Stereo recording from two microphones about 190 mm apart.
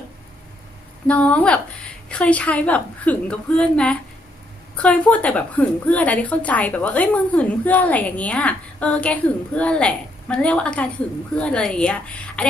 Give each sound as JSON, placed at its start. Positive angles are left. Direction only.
{"t": 1.0, "sound": "a woman's voice", "side_deg": 5}